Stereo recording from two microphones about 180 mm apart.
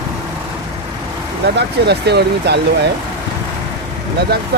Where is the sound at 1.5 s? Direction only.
65° right (ahead or behind).